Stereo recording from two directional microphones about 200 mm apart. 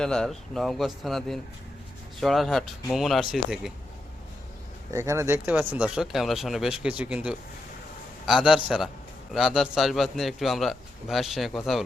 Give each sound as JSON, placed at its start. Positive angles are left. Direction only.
{"t": 0.0, "sound": "speech", "side_deg": 5}
{"t": 4.9, "sound": "speech", "side_deg": -15}